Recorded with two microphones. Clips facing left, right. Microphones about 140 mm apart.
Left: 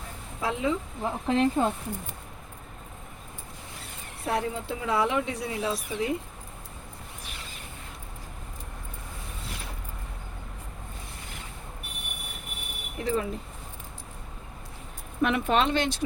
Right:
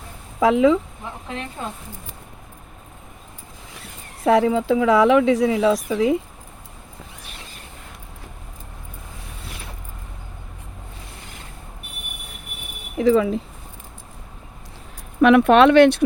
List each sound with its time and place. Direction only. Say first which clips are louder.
0.3 s speech: right 12 dB; 90° right
1.3 s speech: left 10 dB; 35° left (ahead or behind)
4.2 s speech: right 12 dB; 90° right
13.0 s speech: right 12 dB; 90° right
15.2 s speech: right 12 dB; 70° right (ahead or behind)